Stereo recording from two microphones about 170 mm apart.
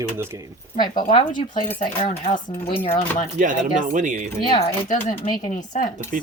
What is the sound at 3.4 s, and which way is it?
Speech, 50° right (ahead or behind).